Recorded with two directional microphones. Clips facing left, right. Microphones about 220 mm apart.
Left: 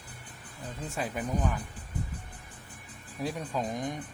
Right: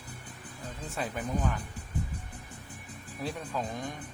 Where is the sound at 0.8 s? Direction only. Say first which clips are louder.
Left 1 dB; 10° left (ahead or behind).